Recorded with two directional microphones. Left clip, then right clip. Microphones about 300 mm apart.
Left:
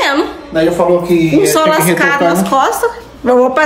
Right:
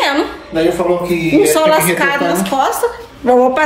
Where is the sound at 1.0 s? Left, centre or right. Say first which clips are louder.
Left 3 dB; centre.